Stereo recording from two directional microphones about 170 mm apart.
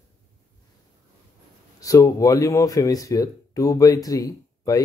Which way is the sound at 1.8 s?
20° left (ahead or behind).